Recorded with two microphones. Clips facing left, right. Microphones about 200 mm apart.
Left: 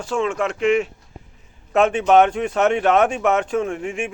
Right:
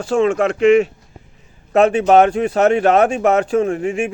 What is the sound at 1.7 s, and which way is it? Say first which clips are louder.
Speech: right 3 dB; 35° right (ahead or behind).